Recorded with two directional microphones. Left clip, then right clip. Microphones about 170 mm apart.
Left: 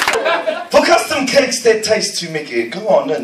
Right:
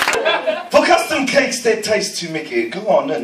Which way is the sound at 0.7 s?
20° left (ahead or behind).